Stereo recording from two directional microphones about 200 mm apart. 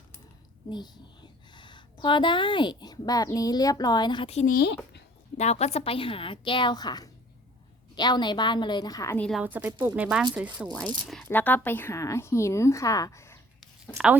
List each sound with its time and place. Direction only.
0.7 s a woman's voice: 20° left (ahead or behind)
4.5 s speech: 55° left (ahead or behind)
5.4 s a woman's voice: 35° left (ahead or behind); by 9.4 s 5° left (ahead or behind)
9.4 s speech: 10° right (ahead or behind)
10.8 s speech: 5° left (ahead or behind)
13.9 s speech: 10° right (ahead or behind)